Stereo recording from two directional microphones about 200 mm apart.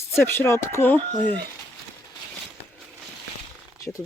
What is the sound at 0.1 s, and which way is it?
Speech, 10° left (ahead or behind).